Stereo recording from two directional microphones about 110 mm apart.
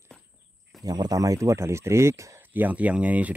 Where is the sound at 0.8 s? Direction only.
35° right (ahead or behind).